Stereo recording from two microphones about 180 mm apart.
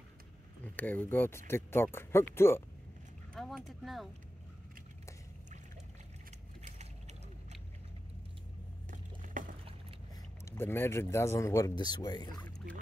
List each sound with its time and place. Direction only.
0.7 s speech: 10° left (ahead or behind)
3.3 s speech: centre (ahead or behind)
6.6 s mechanisms: 40° right (ahead or behind)
8.9 s boat: 50° right (ahead or behind)
10.4 s speech: 15° left (ahead or behind)
12.4 s boat: 5° left (ahead or behind)